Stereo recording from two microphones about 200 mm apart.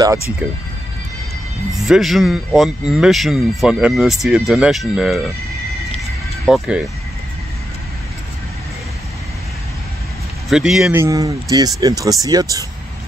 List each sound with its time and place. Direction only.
1.7 s speech: centre (ahead or behind)
6.4 s speech: centre (ahead or behind)
10.5 s speech: 5° right (ahead or behind); by 12.6 s 20° right (ahead or behind)